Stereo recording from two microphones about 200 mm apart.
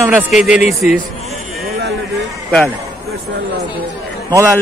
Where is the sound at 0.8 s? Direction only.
35° left (ahead or behind).